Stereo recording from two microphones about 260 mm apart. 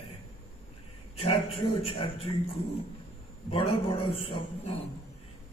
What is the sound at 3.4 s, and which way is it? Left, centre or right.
A man's voice, left.